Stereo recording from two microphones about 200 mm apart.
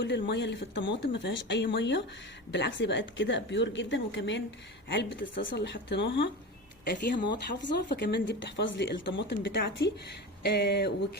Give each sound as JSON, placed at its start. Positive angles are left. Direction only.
{"t": 0.0, "sound": "speech", "side_deg": 60}
{"t": 6.8, "sound": "speech", "side_deg": 50}